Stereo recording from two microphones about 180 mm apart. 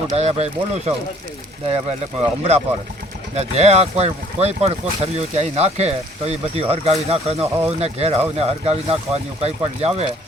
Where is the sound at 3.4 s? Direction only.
35° right (ahead or behind).